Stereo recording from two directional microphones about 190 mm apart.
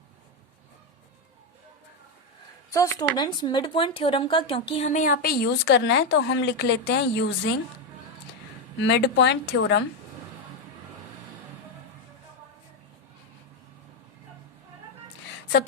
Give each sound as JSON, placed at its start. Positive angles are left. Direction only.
{"t": 2.6, "sound": "speech", "side_deg": 15}
{"t": 8.8, "sound": "speech", "side_deg": 65}